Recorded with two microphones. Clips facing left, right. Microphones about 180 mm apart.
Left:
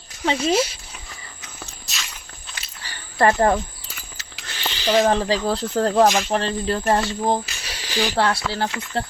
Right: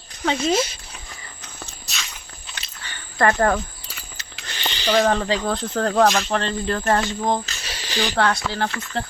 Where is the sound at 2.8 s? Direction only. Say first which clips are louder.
Left 1 dB; 30° left (ahead or behind).